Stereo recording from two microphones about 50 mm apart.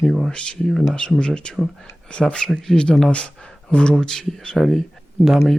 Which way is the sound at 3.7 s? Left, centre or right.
Left.